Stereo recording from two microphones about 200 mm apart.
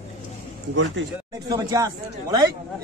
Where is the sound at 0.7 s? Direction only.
65° right (ahead or behind).